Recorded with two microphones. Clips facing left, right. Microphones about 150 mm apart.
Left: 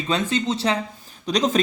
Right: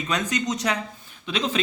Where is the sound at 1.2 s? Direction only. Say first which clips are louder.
Left 6 dB; 40° left (ahead or behind).